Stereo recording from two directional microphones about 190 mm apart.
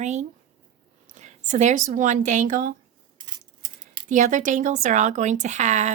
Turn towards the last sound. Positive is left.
turn(degrees=-40)  # may be behind; listen again after turning